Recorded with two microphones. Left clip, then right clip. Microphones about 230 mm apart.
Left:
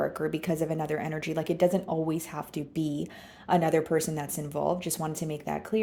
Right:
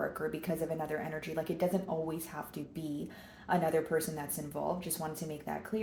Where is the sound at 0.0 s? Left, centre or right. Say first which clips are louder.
Left 6 dB; left.